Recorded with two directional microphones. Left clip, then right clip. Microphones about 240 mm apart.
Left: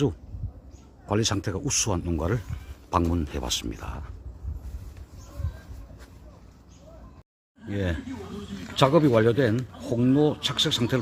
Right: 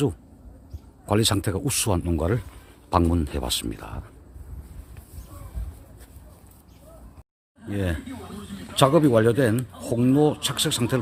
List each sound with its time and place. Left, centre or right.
1.0 s speech: right
7.6 s speech: centre